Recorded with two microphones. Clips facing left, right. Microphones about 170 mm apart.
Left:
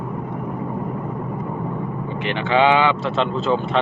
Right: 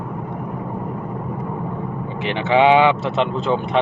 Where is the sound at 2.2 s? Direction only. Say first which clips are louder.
Right 2 dB; 25° right (ahead or behind).